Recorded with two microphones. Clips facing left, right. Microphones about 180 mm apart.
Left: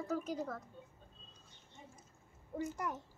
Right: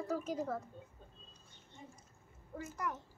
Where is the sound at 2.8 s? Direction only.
25° left (ahead or behind).